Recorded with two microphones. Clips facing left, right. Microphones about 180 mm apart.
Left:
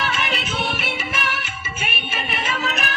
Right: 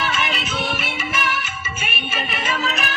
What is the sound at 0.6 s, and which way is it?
Music, 60° left (ahead or behind).